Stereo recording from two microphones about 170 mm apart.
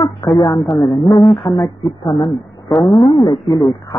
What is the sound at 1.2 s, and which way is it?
Speech, centre (ahead or behind).